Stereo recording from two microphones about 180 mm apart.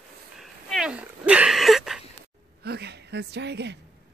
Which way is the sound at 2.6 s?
65° right (ahead or behind).